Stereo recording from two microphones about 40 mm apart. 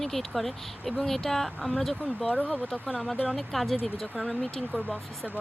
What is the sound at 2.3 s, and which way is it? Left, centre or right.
Speech, left.